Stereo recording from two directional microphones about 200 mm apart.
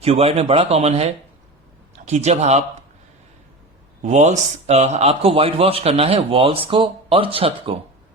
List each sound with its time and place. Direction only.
0.0 s speech: 30° right (ahead or behind)
4.0 s speech: 35° right (ahead or behind)